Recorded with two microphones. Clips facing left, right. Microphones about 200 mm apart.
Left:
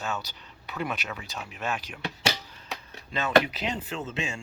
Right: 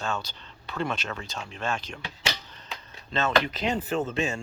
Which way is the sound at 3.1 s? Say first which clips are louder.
Left 2 dB; 15° left (ahead or behind).